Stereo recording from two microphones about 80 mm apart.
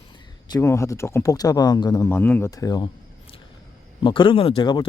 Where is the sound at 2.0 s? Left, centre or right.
Left.